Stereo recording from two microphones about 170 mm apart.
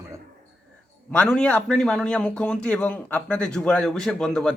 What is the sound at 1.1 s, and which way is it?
A man's voice, 5° left (ahead or behind).